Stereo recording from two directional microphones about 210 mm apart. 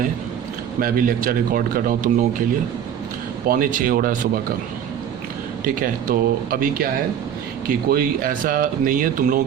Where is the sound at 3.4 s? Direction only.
40° right (ahead or behind).